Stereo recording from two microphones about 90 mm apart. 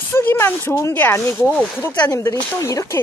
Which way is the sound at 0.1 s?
25° left (ahead or behind).